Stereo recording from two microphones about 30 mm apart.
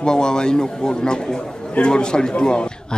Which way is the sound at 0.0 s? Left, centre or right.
Left.